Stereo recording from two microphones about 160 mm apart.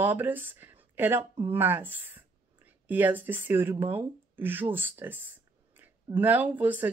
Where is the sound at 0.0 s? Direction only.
10° right (ahead or behind).